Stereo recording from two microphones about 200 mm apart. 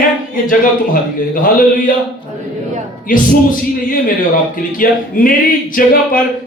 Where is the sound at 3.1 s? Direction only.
40° left (ahead or behind).